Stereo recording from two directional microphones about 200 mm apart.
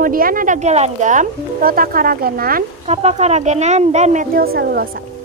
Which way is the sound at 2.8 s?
30° right (ahead or behind).